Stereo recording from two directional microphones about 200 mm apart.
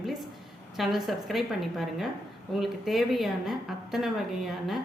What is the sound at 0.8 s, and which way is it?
Speech, centre (ahead or behind).